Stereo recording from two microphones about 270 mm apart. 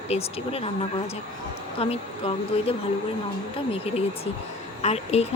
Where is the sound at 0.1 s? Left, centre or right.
Left.